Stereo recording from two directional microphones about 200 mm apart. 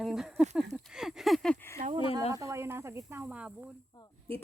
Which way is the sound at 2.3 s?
15° right (ahead or behind).